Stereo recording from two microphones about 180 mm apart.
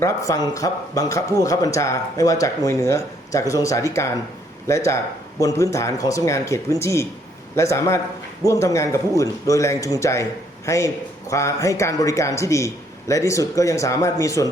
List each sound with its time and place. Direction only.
0.0 s speech: 20° left (ahead or behind)